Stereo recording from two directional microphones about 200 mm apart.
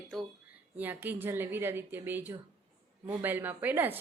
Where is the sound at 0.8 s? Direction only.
10° right (ahead or behind).